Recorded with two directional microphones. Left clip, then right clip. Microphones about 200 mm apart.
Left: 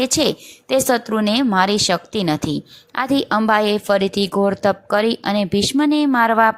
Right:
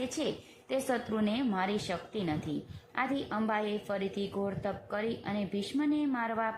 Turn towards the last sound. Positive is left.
turn(degrees=40)  # may be behind; listen again after turning